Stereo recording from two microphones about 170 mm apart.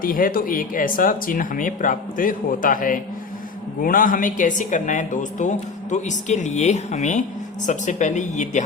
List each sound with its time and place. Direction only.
0.0 s a woman's voice: 55° left (ahead or behind)